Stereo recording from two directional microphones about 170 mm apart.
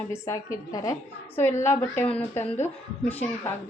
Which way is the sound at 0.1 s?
20° left (ahead or behind).